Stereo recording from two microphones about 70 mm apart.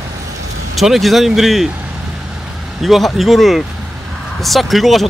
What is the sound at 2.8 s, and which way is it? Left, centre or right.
Speech, centre.